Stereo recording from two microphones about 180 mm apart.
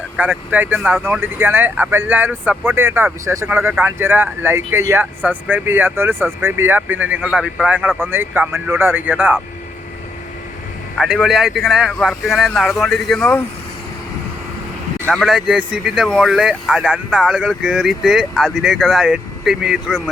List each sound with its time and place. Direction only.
0.2 s speech: 10° right (ahead or behind)
10.9 s speech: centre (ahead or behind)
15.0 s speech: centre (ahead or behind)